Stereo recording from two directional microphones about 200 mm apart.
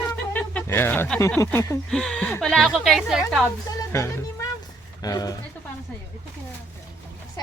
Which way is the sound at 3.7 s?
15° left (ahead or behind).